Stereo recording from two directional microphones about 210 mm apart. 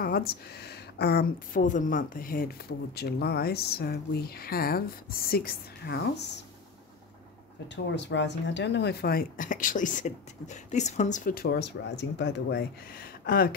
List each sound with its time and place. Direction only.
0.0 s speech: 45° left (ahead or behind)
7.6 s speech: 55° left (ahead or behind)